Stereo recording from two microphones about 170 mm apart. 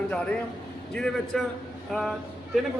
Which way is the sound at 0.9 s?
5° left (ahead or behind).